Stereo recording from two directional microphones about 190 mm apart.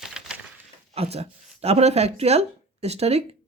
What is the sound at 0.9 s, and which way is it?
Speech, 30° right (ahead or behind).